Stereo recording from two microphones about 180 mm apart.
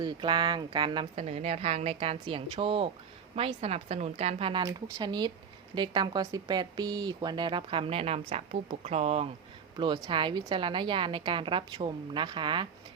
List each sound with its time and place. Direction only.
0.0 s a woman's voice: 25° right (ahead or behind)